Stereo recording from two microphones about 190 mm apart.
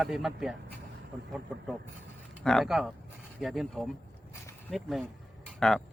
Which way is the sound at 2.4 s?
Centre (ahead or behind).